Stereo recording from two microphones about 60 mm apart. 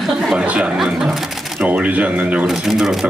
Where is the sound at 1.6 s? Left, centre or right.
Right.